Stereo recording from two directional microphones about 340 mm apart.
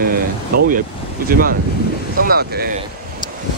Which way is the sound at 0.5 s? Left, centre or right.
Right.